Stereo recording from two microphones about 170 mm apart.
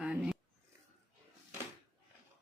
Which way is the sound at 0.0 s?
5° right (ahead or behind).